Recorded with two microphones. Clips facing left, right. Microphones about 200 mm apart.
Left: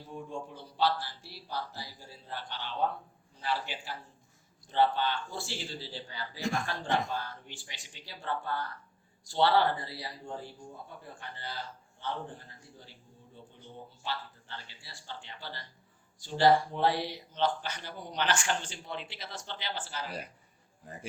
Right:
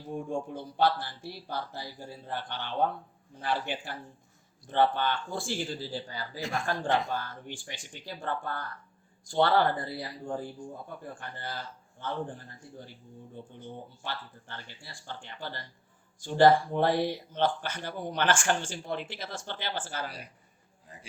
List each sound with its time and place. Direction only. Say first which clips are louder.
0.1 s speech: right 7 dB; 50° right (ahead or behind)
13.3 s speech: right 6 dB; 55° right (ahead or behind)